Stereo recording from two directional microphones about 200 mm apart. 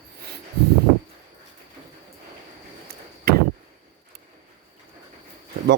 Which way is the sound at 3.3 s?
50° right (ahead or behind).